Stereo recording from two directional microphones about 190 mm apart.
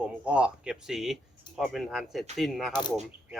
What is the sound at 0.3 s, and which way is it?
A man's voice, 5° right (ahead or behind).